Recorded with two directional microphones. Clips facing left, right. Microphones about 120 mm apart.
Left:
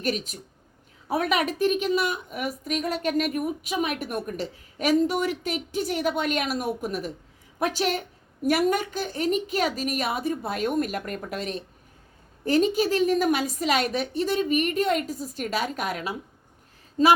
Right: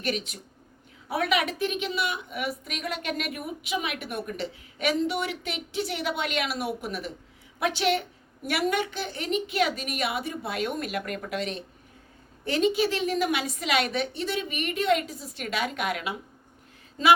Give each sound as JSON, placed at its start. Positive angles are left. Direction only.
{"t": 0.0, "sound": "a woman's voice", "side_deg": 40}